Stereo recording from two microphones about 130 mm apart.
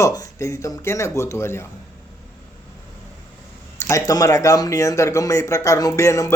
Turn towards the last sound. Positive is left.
turn(degrees=25)  # may be behind; listen again after turning